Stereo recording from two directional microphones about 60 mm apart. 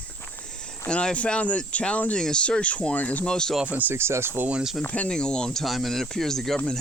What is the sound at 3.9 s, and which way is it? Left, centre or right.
Speech, right.